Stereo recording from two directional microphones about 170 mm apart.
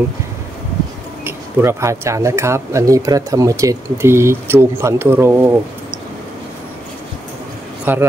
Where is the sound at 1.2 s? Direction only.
15° right (ahead or behind).